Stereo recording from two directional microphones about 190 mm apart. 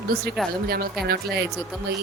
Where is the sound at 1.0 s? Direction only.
55° right (ahead or behind).